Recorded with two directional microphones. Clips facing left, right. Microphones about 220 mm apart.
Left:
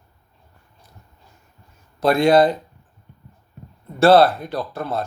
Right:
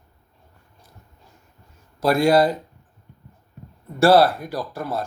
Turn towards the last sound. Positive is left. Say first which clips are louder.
# left 2 dB
turn(degrees=-10)  # may be behind; listen again after turning